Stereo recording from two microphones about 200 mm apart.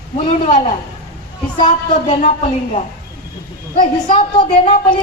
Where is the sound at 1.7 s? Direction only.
35° left (ahead or behind).